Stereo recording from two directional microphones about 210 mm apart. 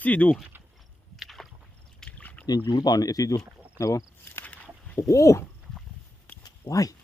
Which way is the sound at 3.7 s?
15° left (ahead or behind).